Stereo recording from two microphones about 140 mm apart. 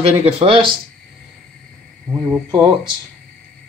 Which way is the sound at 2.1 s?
15° right (ahead or behind).